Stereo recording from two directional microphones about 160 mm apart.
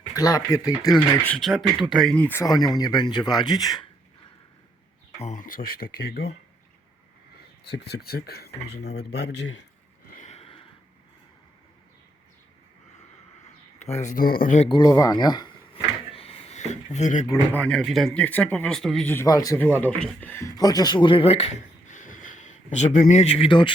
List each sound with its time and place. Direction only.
0.2 s speech: 25° left (ahead or behind)
1.3 s speech: centre (ahead or behind)
2.4 s speech: 25° left (ahead or behind)
5.2 s speech: 55° left (ahead or behind); by 6.3 s 80° left
7.3 s speech: 90° left
10.1 s a sound: 50° left (ahead or behind)
13.7 s speech: 45° left (ahead or behind); by 14.5 s 65° left (ahead or behind)
14.7 s drawer open or close: 25° left (ahead or behind); by 17.2 s 50° left (ahead or behind)
17.2 s speech: 20° left (ahead or behind)
17.6 s speech: 5° left (ahead or behind)
19.1 s speech: 20° left (ahead or behind)